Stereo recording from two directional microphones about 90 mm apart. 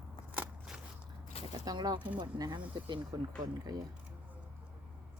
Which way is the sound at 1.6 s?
45° right (ahead or behind).